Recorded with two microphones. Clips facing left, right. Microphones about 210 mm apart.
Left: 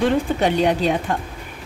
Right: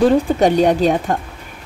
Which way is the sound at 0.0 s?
45° right (ahead or behind).